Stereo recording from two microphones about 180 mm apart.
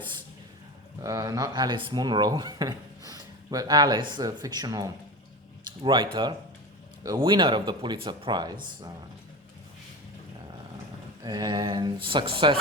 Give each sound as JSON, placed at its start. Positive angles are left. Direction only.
{"t": 1.0, "sound": "speech", "side_deg": -20}
{"t": 11.2, "sound": "speech", "side_deg": -20}